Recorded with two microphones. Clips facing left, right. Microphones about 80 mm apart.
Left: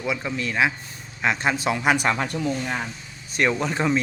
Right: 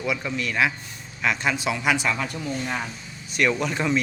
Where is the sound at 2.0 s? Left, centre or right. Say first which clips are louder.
Left 3 dB; left.